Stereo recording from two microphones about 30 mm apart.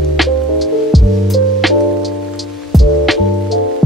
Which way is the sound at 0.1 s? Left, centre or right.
Centre.